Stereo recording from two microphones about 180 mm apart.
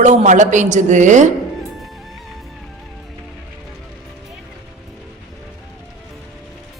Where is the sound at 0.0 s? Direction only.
40° right (ahead or behind).